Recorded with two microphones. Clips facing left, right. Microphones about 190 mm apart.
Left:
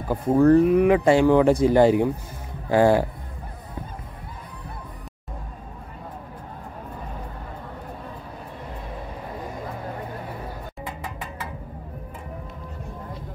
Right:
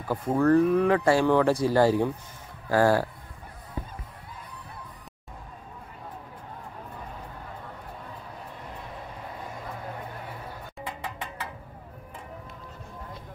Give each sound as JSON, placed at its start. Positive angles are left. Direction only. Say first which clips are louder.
{"t": 0.1, "sound": "speech", "louder": "left 5 dB", "side_deg": 15}